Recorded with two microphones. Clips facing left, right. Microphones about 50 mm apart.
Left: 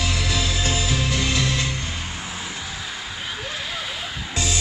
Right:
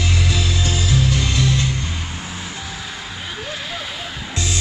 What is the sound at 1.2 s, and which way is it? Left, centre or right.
Music, centre.